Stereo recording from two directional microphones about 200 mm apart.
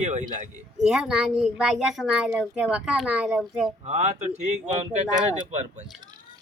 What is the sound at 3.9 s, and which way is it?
Speech, 35° right (ahead or behind).